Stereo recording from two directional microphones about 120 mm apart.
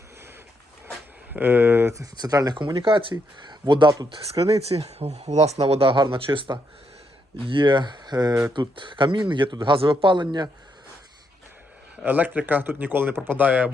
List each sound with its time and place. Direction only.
1.3 s speech: 15° right (ahead or behind); by 4.4 s 35° right (ahead or behind)
4.4 s speech: 55° right (ahead or behind)
12.0 s speech: 15° right (ahead or behind)